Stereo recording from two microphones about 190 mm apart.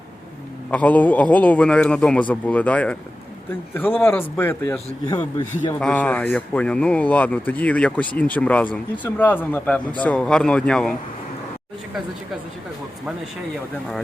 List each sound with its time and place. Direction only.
0.7 s speech: 5° left (ahead or behind)
5.8 s speech: 10° left (ahead or behind)